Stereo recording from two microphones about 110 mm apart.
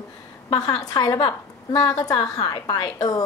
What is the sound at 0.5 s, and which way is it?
A woman's voice, 35° left (ahead or behind).